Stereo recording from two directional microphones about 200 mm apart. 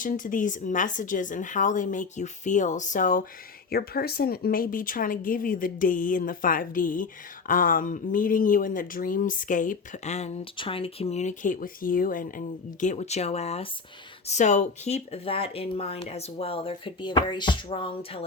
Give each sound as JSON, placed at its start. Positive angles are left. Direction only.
{"t": 0.0, "sound": "a woman's voice", "side_deg": 40}